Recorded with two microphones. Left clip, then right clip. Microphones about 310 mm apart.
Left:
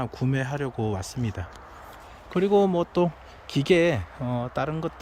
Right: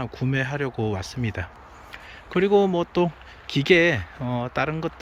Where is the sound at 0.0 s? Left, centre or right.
Centre.